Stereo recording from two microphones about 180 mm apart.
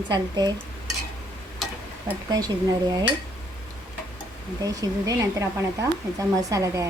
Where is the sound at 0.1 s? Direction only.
20° right (ahead or behind).